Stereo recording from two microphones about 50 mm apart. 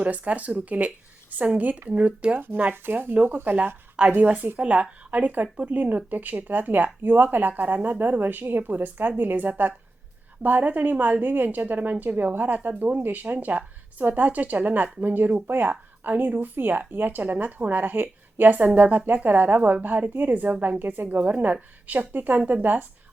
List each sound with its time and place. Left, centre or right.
0.0 s a woman's voice: right
2.7 s a woman's voice: right
4.6 s a woman's voice: right